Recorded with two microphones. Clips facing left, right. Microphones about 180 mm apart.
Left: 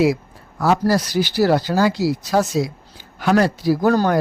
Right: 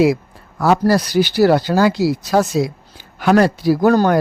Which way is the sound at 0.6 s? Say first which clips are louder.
Right 3 dB; 65° right (ahead or behind).